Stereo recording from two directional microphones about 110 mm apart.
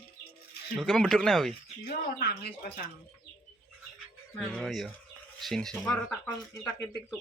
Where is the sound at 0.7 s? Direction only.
5° left (ahead or behind).